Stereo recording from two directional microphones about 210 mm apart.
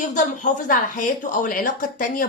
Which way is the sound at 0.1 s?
35° left (ahead or behind).